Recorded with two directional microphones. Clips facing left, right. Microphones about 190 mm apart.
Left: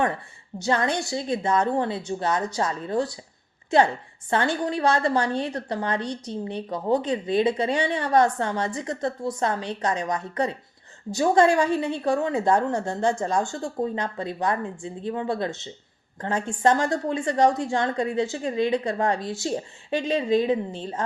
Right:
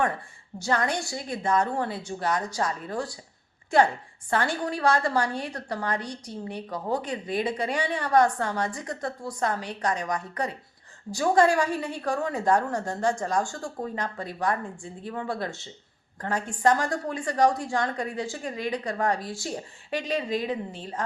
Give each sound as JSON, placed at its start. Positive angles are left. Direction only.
{"t": 0.6, "sound": "a woman's voice", "side_deg": 25}